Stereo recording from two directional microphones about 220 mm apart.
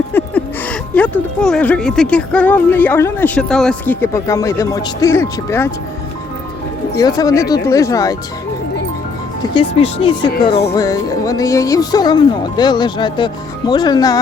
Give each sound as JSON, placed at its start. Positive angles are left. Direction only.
{"t": 0.1, "sound": "speech", "side_deg": 5}
{"t": 6.9, "sound": "speech", "side_deg": 15}
{"t": 9.6, "sound": "speech", "side_deg": 25}
{"t": 10.8, "sound": "speech", "side_deg": 15}